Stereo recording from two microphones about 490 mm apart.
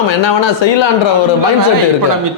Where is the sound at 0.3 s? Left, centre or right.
Left.